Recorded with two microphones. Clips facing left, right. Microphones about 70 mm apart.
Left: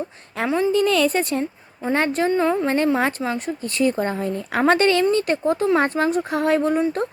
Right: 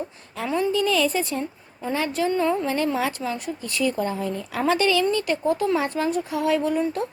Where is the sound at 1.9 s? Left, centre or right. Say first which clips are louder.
Left 4 dB; left.